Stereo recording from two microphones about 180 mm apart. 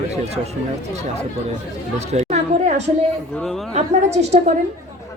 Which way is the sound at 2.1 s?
35° right (ahead or behind).